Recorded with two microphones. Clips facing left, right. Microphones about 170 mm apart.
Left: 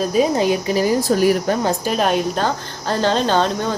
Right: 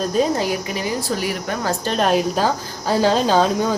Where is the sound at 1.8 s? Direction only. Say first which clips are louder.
Even; 5° left (ahead or behind).